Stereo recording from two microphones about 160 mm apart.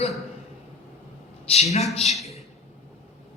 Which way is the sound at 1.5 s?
40° left (ahead or behind).